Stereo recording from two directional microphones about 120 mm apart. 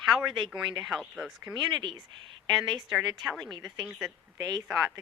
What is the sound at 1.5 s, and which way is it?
Speech, 40° right (ahead or behind).